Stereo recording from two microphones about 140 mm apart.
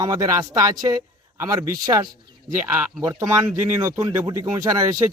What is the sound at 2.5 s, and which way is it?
Speech, 15° right (ahead or behind).